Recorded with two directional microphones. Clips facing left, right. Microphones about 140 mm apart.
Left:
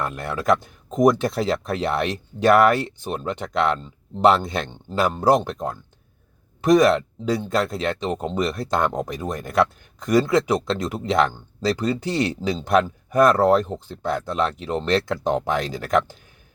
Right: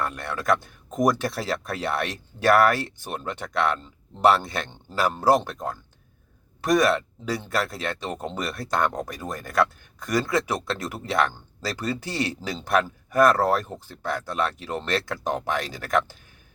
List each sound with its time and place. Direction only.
0.0 s speech: 20° left (ahead or behind)